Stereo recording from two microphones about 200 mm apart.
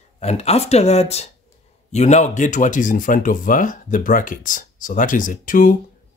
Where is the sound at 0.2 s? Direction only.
35° left (ahead or behind).